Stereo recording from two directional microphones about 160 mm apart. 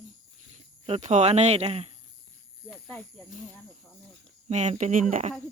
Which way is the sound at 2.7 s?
5° left (ahead or behind).